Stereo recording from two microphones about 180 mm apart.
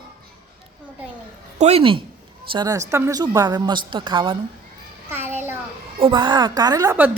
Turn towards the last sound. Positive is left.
turn(degrees=-20)  # may be behind; listen again after turning